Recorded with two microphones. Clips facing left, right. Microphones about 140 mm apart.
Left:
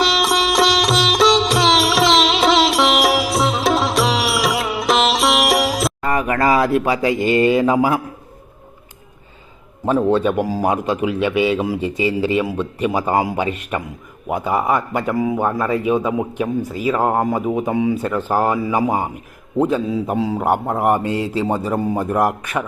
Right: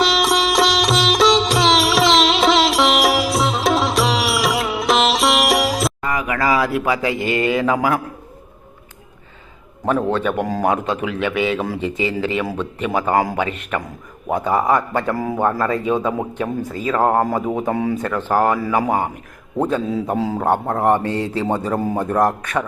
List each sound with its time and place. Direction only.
0.0 s music: centre (ahead or behind)
6.1 s speech: 30° left (ahead or behind)
10.4 s speech: 5° left (ahead or behind)
10.7 s speech: 20° left (ahead or behind); by 18.0 s 5° left (ahead or behind)
18.0 s speech: 15° left (ahead or behind)
19.8 s speech: centre (ahead or behind)
20.4 s speech: 10° left (ahead or behind)
22.0 s speech: 10° left (ahead or behind)